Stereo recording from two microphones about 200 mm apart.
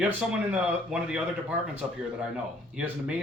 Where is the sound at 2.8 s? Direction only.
5° right (ahead or behind).